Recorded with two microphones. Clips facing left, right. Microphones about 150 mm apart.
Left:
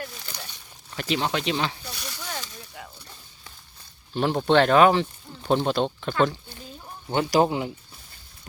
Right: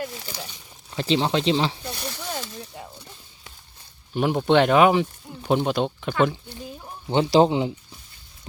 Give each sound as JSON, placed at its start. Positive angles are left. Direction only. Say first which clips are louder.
{"t": 0.0, "sound": "a sound", "louder": "right 5 dB", "side_deg": -20}
{"t": 0.9, "sound": "snake", "louder": "right 4 dB", "side_deg": -25}
{"t": 4.1, "sound": "speech", "louder": "right 1 dB", "side_deg": -10}